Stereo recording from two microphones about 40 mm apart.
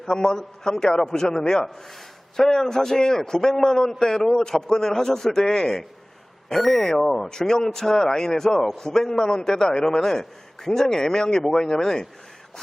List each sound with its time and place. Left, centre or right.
0.0 s a man's voice: centre